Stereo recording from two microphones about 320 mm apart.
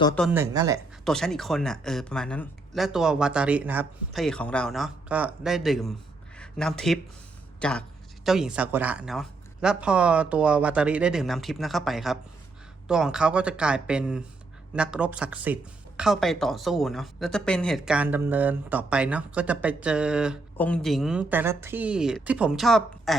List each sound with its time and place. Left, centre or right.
0.2 s speech: centre
1.0 s speech: centre